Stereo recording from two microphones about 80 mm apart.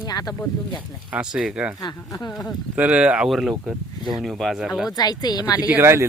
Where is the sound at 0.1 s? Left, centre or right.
Left.